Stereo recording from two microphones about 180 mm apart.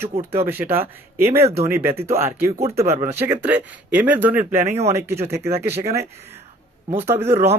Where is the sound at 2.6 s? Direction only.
35° right (ahead or behind).